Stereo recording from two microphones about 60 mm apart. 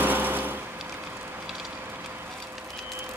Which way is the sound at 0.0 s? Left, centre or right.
Right.